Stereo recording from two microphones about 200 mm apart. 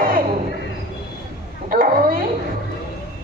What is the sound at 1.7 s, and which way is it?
Bow-wow, 45° right (ahead or behind).